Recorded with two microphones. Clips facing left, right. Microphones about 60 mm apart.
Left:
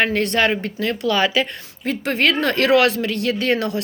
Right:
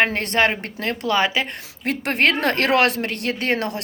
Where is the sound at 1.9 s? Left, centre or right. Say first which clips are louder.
Even; right.